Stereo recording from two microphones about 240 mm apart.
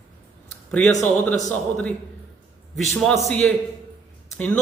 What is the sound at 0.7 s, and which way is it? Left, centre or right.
A man's voice, centre.